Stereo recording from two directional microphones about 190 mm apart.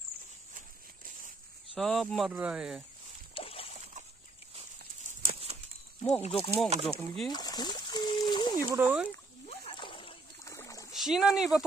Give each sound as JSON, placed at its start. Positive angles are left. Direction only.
{"t": 0.6, "sound": "a sound", "side_deg": -45}
{"t": 1.8, "sound": "speech", "side_deg": 0}
{"t": 3.3, "sound": "boat", "side_deg": 30}
{"t": 4.6, "sound": "a sound", "side_deg": -35}
{"t": 6.2, "sound": "speech", "side_deg": 30}
{"t": 6.7, "sound": "speech", "side_deg": -30}
{"t": 7.2, "sound": "speech", "side_deg": 20}
{"t": 8.6, "sound": "speech", "side_deg": -10}
{"t": 9.5, "sound": "splash", "side_deg": 25}
{"t": 10.4, "sound": "a sound", "side_deg": 15}
{"t": 10.9, "sound": "speech", "side_deg": 0}